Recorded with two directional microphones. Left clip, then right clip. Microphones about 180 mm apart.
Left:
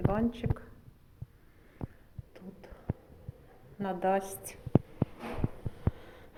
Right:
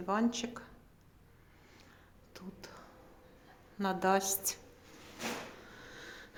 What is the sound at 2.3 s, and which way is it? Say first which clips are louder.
Whispering: even; 35° right (ahead or behind).